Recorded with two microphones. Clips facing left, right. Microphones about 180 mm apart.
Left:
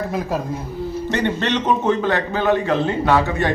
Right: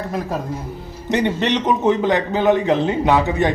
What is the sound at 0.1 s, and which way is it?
Speech, centre (ahead or behind).